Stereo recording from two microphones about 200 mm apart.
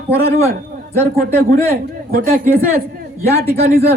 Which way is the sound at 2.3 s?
45° right (ahead or behind).